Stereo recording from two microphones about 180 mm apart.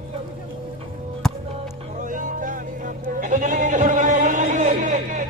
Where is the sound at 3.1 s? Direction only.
45° right (ahead or behind).